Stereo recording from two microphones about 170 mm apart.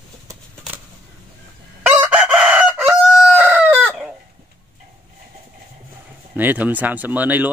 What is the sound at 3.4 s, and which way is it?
Chicken, 10° right (ahead or behind).